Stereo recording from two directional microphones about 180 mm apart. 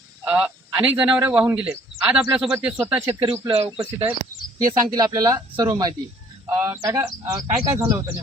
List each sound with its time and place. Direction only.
0.3 s a man's voice: 5° right (ahead or behind)
3.1 s speech: 30° right (ahead or behind)
3.7 s a man's voice: 10° right (ahead or behind)
4.5 s a man's voice: 20° right (ahead or behind)